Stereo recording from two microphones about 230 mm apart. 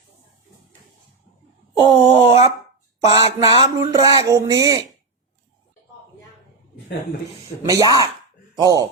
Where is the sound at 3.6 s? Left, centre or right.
Centre.